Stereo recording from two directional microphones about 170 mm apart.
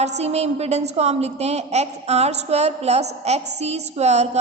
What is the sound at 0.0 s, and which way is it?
A woman's voice, 40° right (ahead or behind).